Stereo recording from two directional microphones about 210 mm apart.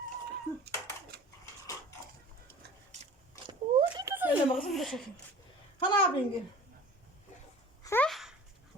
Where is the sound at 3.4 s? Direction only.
20° right (ahead or behind); by 5.0 s centre (ahead or behind).